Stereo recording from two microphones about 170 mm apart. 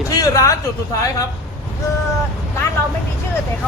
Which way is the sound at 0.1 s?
20° left (ahead or behind).